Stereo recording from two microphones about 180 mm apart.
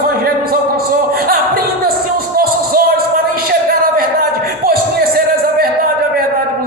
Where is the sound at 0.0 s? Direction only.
55° right (ahead or behind).